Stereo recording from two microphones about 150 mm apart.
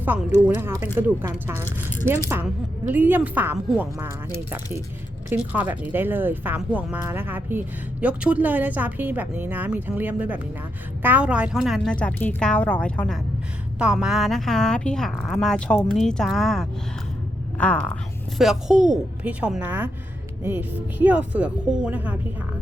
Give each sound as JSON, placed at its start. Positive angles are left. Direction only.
{"t": 0.4, "sound": "speech", "side_deg": -15}
{"t": 5.3, "sound": "speech", "side_deg": -10}
{"t": 11.9, "sound": "speech", "side_deg": 10}
{"t": 13.7, "sound": "a woman's voice", "side_deg": -5}
{"t": 18.3, "sound": "speech", "side_deg": -5}